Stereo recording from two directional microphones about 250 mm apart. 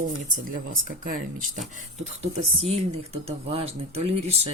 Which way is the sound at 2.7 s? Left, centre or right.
Right.